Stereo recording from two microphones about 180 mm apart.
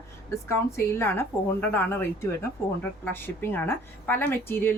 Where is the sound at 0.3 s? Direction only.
15° left (ahead or behind).